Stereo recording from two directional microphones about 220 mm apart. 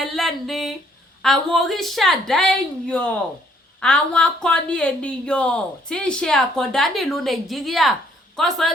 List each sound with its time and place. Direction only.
0.0 s speech: centre (ahead or behind)